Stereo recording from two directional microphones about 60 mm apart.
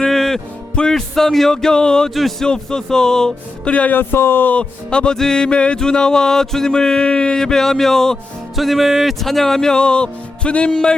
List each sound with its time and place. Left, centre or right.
0.0 s music: centre
2.1 s a man's voice: centre
2.5 s music: centre
3.7 s speech: left
3.9 s speech: left
4.5 s music: centre